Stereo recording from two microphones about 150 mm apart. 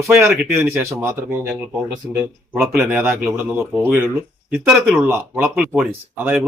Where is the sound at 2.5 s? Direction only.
5° right (ahead or behind).